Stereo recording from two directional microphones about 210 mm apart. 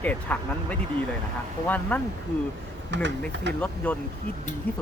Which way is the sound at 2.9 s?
60° right (ahead or behind).